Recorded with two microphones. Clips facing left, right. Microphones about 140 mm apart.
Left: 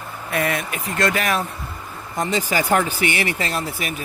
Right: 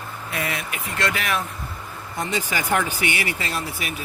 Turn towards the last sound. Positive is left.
turn(degrees=40)  # may be behind; listen again after turning